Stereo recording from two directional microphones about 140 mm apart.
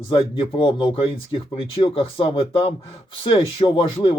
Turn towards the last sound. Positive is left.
turn(degrees=40)  # may be behind; listen again after turning